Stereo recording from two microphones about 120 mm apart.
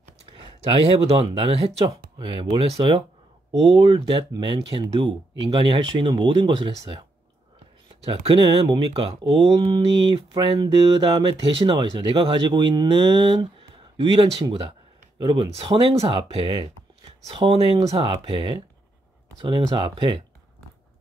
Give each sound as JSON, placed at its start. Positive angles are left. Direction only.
{"t": 0.3, "sound": "speech", "side_deg": -45}
{"t": 2.1, "sound": "speech", "side_deg": -40}
{"t": 8.0, "sound": "speech", "side_deg": -50}